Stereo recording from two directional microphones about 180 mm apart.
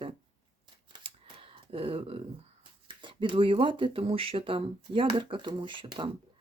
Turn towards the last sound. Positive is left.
turn(degrees=-30)  # may be behind; listen again after turning